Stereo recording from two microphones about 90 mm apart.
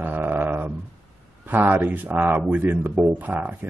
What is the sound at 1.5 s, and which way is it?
Speech, 20° right (ahead or behind).